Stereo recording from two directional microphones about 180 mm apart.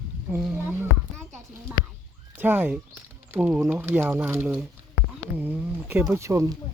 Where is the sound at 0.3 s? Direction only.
10° right (ahead or behind).